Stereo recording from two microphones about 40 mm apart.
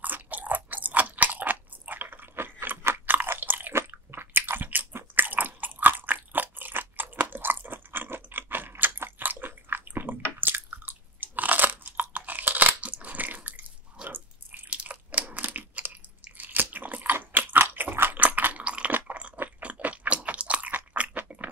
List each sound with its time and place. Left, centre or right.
0.0 s crunch: right
2.0 s drip: right
2.8 s crunch: right
3.3 s biting: right
3.7 s biting: right
5.1 s crunch: right
14.0 s drip: right
14.9 s crunch: right
16.3 s biting: right
18.2 s a sound: right
18.6 s chewing: right
18.9 s chewing: right
19.6 s crunch: right